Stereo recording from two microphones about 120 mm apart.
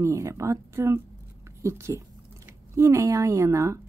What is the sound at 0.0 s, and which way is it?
Speech, 25° right (ahead or behind).